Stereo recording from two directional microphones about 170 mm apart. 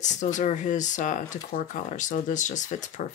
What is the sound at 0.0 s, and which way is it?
Speech, 45° left (ahead or behind).